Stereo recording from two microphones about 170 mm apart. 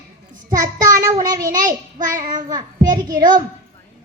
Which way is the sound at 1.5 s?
50° right (ahead or behind).